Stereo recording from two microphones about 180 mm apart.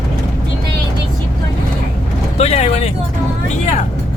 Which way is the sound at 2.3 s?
35° left (ahead or behind).